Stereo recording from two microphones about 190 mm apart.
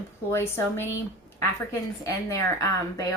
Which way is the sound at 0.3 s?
15° left (ahead or behind).